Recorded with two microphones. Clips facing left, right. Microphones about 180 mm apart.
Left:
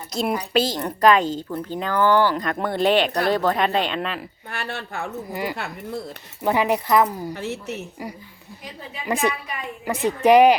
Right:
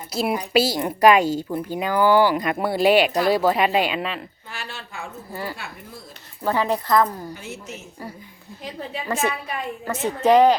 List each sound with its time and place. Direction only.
0.1 s a woman's voice: 5° right (ahead or behind)
4.5 s speech: 60° left (ahead or behind)
5.3 s speech: 15° left (ahead or behind)
7.3 s speech: 65° left (ahead or behind)
9.0 s speech: 15° left (ahead or behind)